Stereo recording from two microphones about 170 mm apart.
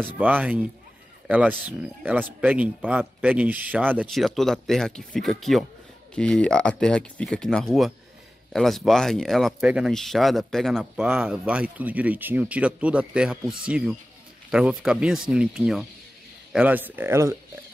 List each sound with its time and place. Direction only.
0.0 s speech: 10° right (ahead or behind)
4.1 s speech: centre (ahead or behind)
11.1 s speech: 10° right (ahead or behind)